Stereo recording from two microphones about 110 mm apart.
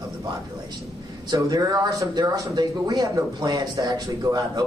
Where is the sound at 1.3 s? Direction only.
35° right (ahead or behind).